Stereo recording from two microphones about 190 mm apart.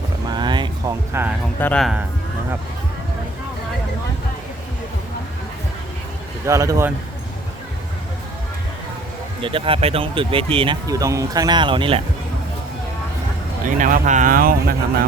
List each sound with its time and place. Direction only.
0.3 s a sound: 25° right (ahead or behind)
1.1 s speech: 15° right (ahead or behind)
1.5 s speech: 10° left (ahead or behind)
6.4 s speech: 15° right (ahead or behind)
9.4 s speech: 25° right (ahead or behind)
10.8 s speech: 15° right (ahead or behind)
13.7 s speech: 45° right (ahead or behind)